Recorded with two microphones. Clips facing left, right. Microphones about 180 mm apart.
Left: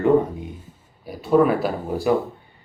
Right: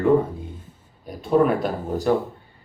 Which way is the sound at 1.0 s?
5° left (ahead or behind).